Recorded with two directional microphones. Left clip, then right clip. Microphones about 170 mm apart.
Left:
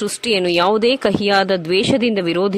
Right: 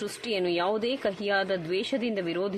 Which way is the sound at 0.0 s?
40° left (ahead or behind).